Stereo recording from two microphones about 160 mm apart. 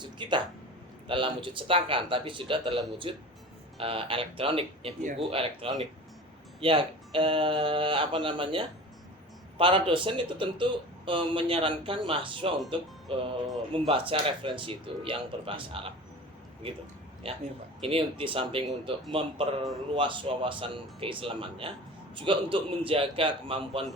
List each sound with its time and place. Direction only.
0.0 s speech: 30° right (ahead or behind)
17.8 s speech: 35° right (ahead or behind)